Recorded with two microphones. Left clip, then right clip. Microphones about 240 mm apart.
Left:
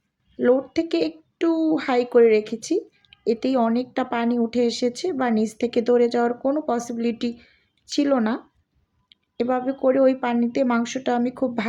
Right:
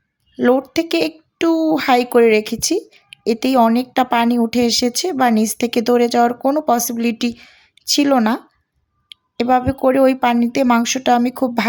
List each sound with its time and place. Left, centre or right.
0.3 s speech: right